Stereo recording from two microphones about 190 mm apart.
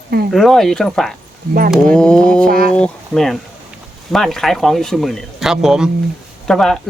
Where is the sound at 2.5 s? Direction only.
50° right (ahead or behind).